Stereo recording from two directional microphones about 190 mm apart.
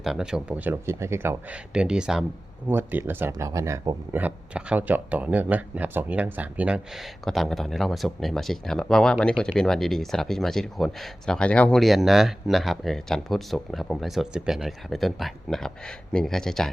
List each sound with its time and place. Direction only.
0.0 s speech: 5° right (ahead or behind)